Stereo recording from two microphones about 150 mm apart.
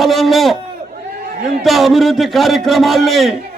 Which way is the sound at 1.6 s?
Centre (ahead or behind).